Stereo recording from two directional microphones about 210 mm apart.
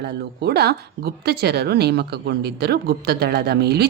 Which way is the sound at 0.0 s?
50° right (ahead or behind).